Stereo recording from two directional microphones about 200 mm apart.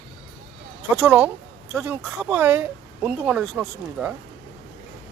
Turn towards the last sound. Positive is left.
turn(degrees=-5)  # may be behind; listen again after turning